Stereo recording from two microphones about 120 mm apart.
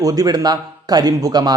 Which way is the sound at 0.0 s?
30° right (ahead or behind).